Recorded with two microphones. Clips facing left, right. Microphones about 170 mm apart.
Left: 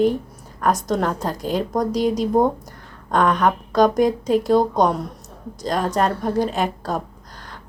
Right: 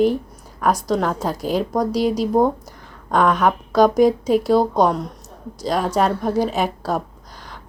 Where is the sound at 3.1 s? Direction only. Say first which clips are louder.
Right 1 dB; 5° right (ahead or behind).